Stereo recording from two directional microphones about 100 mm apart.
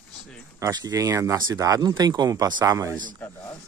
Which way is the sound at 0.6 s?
35° right (ahead or behind).